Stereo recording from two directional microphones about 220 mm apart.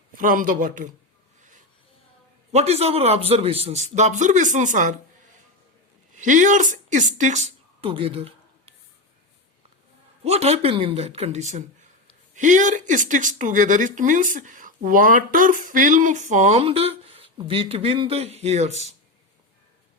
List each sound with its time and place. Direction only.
0.1 s speech: 40° right (ahead or behind)
1.4 s a sound: 35° right (ahead or behind)
2.5 s a man's voice: 30° right (ahead or behind)
6.1 s speech: 35° right (ahead or behind)
10.2 s a man's voice: 30° right (ahead or behind)